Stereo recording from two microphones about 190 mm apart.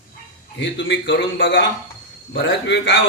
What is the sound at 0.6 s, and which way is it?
A man's voice, 70° left (ahead or behind).